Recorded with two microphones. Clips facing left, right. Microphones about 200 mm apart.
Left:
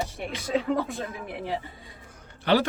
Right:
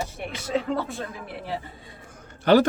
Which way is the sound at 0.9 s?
15° left (ahead or behind).